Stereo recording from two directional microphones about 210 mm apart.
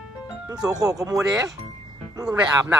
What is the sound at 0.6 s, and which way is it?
Speech, 15° right (ahead or behind).